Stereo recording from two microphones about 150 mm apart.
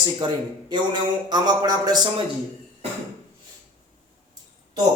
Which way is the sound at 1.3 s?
25° right (ahead or behind).